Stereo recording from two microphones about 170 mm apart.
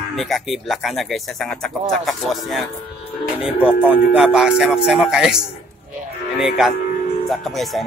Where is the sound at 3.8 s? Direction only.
10° right (ahead or behind).